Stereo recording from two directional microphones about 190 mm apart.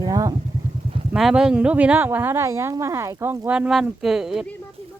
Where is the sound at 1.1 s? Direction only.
Centre (ahead or behind).